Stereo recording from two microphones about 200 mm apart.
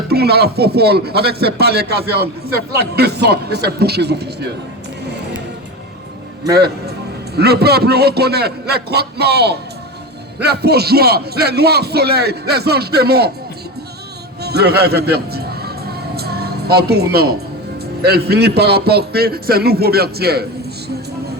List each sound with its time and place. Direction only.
0.1 s a man's voice: 55° right (ahead or behind)
6.5 s speech: 55° right (ahead or behind)
14.4 s music: 55° right (ahead or behind)
18.0 s speech: 55° right (ahead or behind)